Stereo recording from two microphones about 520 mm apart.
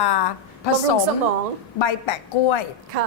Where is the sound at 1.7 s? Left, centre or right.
Left.